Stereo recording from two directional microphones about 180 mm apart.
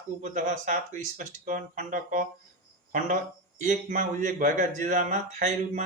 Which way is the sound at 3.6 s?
45° right (ahead or behind).